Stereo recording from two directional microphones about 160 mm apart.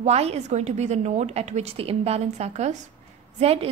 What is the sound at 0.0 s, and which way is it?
A woman's voice, 40° right (ahead or behind).